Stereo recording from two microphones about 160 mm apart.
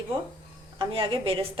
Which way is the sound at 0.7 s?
35° right (ahead or behind).